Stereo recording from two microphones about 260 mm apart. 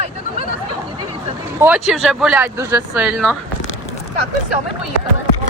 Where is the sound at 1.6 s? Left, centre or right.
Centre.